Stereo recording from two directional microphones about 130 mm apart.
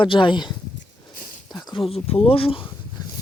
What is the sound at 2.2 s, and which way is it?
Speech, 45° left (ahead or behind).